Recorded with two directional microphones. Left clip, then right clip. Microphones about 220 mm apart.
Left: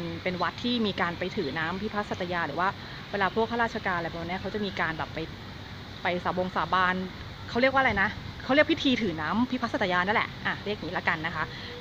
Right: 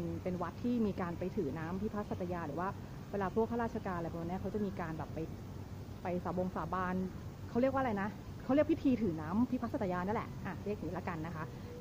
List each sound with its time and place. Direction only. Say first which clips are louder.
0.2 s speech: left 14 dB; 15° left (ahead or behind)
9.2 s speech: left 9 dB; 20° left (ahead or behind)